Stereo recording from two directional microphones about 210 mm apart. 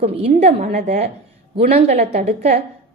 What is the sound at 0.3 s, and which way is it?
A woman's voice, 30° right (ahead or behind).